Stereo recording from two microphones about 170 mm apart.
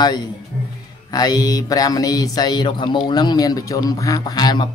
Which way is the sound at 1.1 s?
20° left (ahead or behind).